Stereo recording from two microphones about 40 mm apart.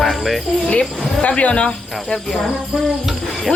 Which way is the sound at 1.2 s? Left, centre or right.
Left.